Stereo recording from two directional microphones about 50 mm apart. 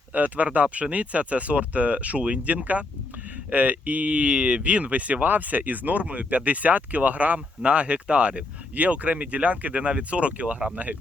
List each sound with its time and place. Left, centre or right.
0.1 s speech: right